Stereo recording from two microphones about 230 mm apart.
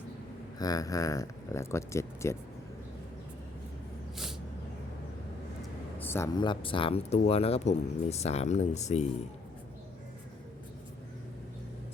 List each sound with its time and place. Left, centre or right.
0.6 s speech: centre
6.0 s speech: centre; by 9.0 s left